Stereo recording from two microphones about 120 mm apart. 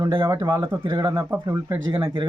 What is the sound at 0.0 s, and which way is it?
Speech, 25° right (ahead or behind).